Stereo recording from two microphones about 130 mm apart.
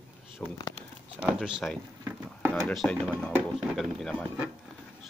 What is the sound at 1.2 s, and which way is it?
Speech, 5° right (ahead or behind).